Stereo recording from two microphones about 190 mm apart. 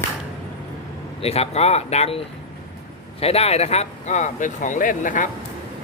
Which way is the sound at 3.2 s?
30° left (ahead or behind).